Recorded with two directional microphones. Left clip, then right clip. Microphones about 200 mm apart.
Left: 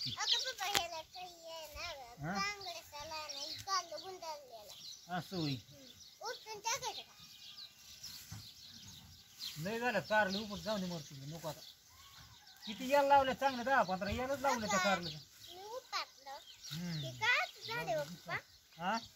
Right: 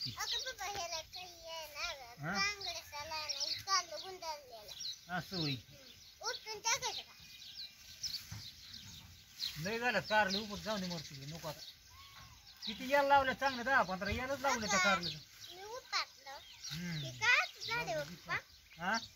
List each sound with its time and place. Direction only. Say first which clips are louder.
0.0 s a sound: left 4 dB; 5° right (ahead or behind)
6.2 s a child's voice: right 3 dB; centre (ahead or behind)
9.6 s speech: right 1 dB; centre (ahead or behind)
10.9 s speech: right 2 dB; centre (ahead or behind)
12.6 s speech: left 1 dB; 10° left (ahead or behind)
15.9 s a sound: right 4 dB; 5° left (ahead or behind)
17.0 s a child's voice: right 2 dB; 5° right (ahead or behind)
18.8 s speech: right 1 dB; 5° left (ahead or behind)